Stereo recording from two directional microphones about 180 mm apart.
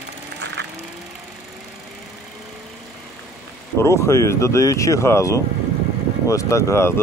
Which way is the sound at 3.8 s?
15° left (ahead or behind).